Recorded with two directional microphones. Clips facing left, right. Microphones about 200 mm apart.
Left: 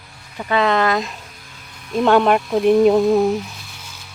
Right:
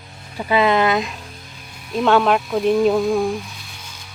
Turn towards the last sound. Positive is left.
turn(degrees=20)  # may be behind; listen again after turning